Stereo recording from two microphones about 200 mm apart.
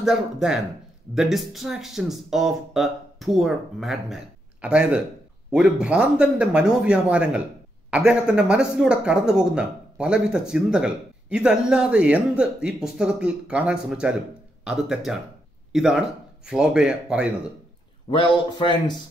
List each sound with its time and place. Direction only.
0.0 s speech: 5° right (ahead or behind)
18.1 s a man's voice: 25° left (ahead or behind)